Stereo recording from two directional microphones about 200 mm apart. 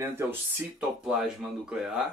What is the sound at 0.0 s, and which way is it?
Speech, 10° right (ahead or behind).